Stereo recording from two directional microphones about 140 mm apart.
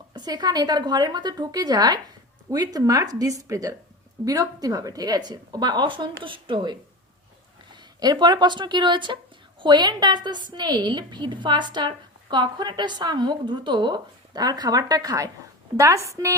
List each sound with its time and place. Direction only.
0.1 s a woman's voice: 30° right (ahead or behind)